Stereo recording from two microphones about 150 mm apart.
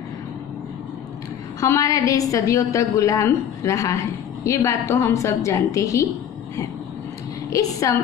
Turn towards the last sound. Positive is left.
turn(degrees=20)  # may be behind; listen again after turning